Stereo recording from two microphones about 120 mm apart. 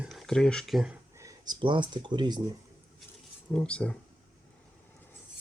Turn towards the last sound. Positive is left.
turn(degrees=10)  # may be behind; listen again after turning